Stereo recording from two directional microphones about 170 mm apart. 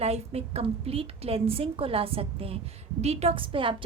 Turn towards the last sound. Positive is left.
turn(degrees=-30)  # may be behind; listen again after turning